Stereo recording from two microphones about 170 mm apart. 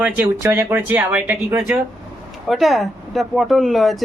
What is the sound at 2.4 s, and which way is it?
Speech, centre (ahead or behind).